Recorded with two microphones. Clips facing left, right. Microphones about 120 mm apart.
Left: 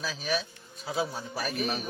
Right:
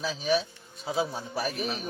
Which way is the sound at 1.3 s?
25° right (ahead or behind).